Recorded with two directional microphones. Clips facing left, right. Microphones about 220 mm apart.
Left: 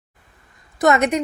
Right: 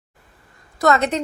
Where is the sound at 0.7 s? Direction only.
15° left (ahead or behind).